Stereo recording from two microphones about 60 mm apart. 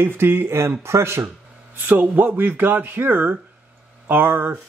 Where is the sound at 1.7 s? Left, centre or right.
Right.